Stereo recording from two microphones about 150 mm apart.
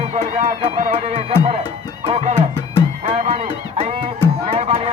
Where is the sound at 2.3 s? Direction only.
15° left (ahead or behind).